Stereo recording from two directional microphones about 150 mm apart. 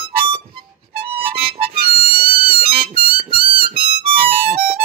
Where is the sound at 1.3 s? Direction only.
40° right (ahead or behind).